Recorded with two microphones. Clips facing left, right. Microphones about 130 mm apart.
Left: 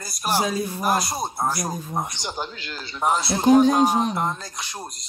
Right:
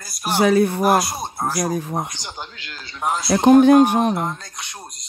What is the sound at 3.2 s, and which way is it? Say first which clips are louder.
Speech: right 5 dB; 55° right (ahead or behind).